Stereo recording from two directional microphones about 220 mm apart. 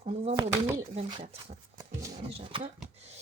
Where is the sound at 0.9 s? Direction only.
25° right (ahead or behind).